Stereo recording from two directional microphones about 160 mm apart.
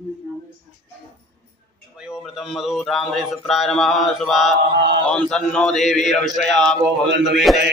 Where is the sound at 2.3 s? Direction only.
Centre (ahead or behind).